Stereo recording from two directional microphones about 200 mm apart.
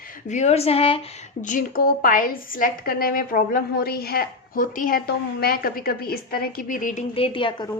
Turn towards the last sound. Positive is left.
turn(degrees=25)  # may be behind; listen again after turning